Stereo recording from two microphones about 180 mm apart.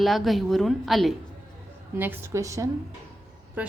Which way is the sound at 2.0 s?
10° right (ahead or behind).